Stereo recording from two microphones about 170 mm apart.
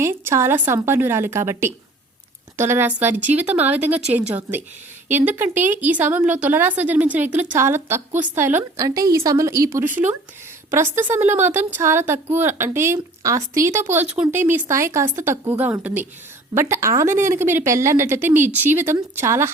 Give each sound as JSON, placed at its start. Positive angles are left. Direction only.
{"t": 0.0, "sound": "speech", "side_deg": -15}